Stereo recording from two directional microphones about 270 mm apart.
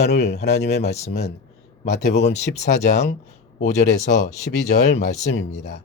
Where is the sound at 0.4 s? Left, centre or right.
Left.